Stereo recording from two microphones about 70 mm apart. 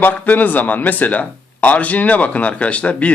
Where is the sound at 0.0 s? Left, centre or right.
Left.